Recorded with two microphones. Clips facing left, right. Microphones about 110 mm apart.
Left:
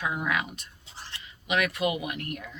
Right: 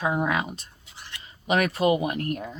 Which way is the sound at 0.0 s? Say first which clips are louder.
Right 5 dB; 30° right (ahead or behind).